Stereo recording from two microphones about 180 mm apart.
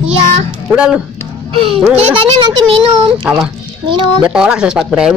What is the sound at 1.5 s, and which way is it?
Speech, 30° right (ahead or behind).